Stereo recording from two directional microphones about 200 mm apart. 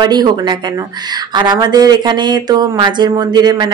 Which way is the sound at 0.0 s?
20° right (ahead or behind).